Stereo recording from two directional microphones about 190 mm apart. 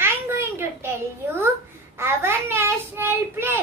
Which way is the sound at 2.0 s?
15° right (ahead or behind).